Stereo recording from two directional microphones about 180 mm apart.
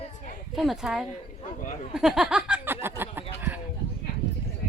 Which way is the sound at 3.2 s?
10° right (ahead or behind).